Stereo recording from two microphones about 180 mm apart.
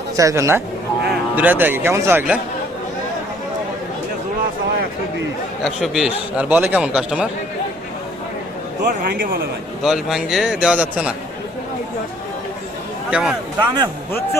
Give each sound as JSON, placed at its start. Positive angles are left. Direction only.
{"t": 0.2, "sound": "a man's voice", "side_deg": -15}
{"t": 5.6, "sound": "a man's voice", "side_deg": 0}
{"t": 8.8, "sound": "a man's voice", "side_deg": -55}
{"t": 9.8, "sound": "a man's voice", "side_deg": 0}
{"t": 13.1, "sound": "a man's voice", "side_deg": -5}